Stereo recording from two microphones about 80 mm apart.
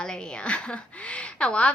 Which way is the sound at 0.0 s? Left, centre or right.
Centre.